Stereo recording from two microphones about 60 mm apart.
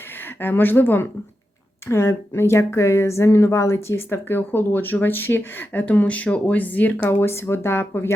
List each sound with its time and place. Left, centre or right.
0.2 s speech: left
1.9 s speech: left